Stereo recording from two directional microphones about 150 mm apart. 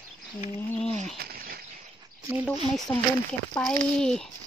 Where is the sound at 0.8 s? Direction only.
50° right (ahead or behind).